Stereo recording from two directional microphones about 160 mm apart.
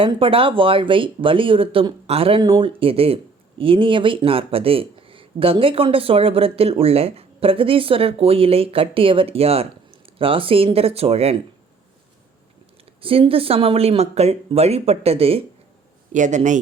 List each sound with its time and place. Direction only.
0.0 s speech: 35° right (ahead or behind)
13.0 s speech: 35° right (ahead or behind)
16.1 s a man's voice: 50° right (ahead or behind)